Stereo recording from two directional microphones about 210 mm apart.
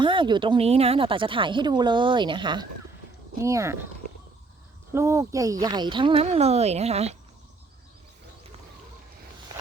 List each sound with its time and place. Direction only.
0.0 s speech: 25° right (ahead or behind)
4.9 s speech: 15° right (ahead or behind); by 7.2 s 30° right (ahead or behind)